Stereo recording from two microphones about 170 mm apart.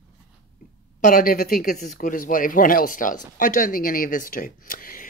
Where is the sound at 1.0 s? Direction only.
55° left (ahead or behind).